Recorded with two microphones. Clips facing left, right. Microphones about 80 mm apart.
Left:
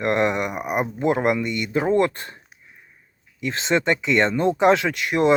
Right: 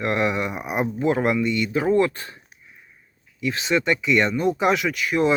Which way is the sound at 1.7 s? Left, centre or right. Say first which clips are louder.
Left 2 dB; left.